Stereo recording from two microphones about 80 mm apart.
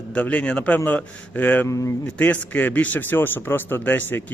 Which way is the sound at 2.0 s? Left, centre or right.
Left.